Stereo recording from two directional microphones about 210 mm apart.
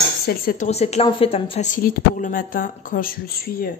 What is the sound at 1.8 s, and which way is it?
Speech, 40° left (ahead or behind).